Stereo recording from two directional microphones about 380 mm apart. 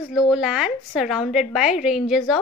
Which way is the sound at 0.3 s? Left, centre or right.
Centre.